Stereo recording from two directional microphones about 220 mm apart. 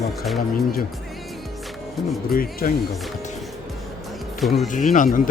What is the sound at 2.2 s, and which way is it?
Speech, 40° left (ahead or behind).